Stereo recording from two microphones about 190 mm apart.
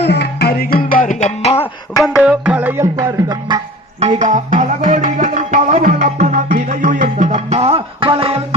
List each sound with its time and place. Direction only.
0.0 s music: 60° left (ahead or behind); by 1.5 s 35° left (ahead or behind)
1.5 s music: 15° left (ahead or behind)
2.1 s music: 5° right (ahead or behind)
4.0 s music: 35° right (ahead or behind)